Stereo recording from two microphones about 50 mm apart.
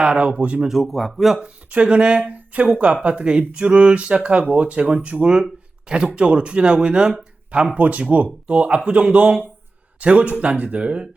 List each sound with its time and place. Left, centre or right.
0.0 s speech: right
0.7 s a man's voice: centre
1.4 s speech: right